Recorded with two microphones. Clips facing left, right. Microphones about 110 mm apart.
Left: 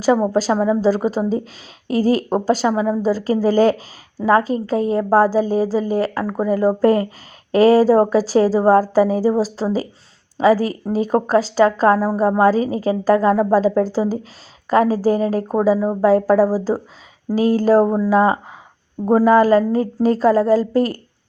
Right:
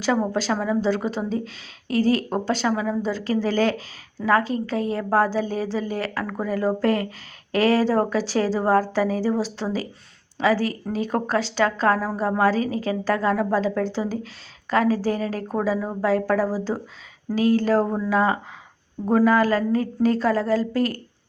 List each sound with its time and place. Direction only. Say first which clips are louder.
0.1 s a woman's voice: left 6 dB; 35° left (ahead or behind)
2.6 s a woman's voice: left 6 dB; 25° left (ahead or behind)
4.2 s a woman's voice: left 5 dB; 25° left (ahead or behind)
4.4 s a woman's voice: left 6 dB; 40° left (ahead or behind)